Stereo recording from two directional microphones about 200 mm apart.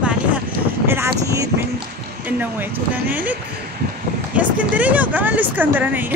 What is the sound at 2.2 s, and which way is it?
Speech, 10° right (ahead or behind).